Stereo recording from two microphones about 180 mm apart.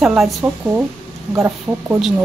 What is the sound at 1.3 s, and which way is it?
Speech, 15° right (ahead or behind).